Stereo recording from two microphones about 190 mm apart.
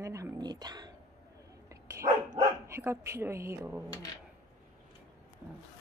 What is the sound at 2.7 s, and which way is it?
A woman's voice, 15° right (ahead or behind).